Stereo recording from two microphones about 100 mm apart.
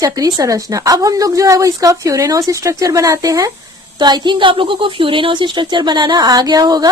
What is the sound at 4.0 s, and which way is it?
A woman's voice, 45° right (ahead or behind).